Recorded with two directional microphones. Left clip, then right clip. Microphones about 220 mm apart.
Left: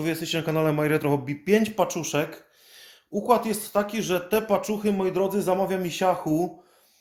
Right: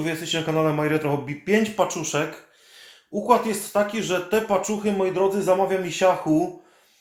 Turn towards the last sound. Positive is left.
turn(degrees=55)  # may be behind; listen again after turning